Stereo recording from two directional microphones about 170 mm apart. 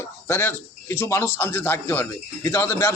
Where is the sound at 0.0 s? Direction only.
15° left (ahead or behind).